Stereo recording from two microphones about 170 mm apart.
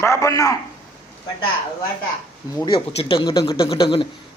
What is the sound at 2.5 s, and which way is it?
Speech, 25° left (ahead or behind).